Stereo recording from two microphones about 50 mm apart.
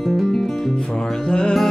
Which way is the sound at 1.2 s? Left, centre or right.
Centre.